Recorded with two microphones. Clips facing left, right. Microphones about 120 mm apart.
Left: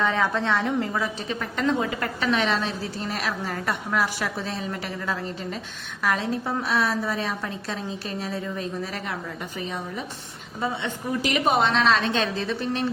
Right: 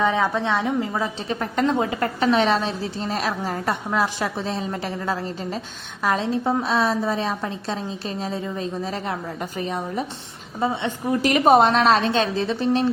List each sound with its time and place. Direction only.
0.0 s a woman's voice: 15° right (ahead or behind)
0.9 s a woman's voice: 30° right (ahead or behind)
1.4 s a woman's voice: 40° right (ahead or behind)
9.4 s a woman's voice: 40° right (ahead or behind)
10.6 s a woman's voice: 30° right (ahead or behind)
11.2 s a woman's voice: 40° right (ahead or behind)